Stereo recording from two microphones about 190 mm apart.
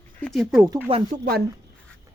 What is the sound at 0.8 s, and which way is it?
Speech, 30° right (ahead or behind).